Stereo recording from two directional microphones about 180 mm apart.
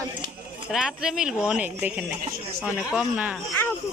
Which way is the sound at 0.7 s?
5° right (ahead or behind).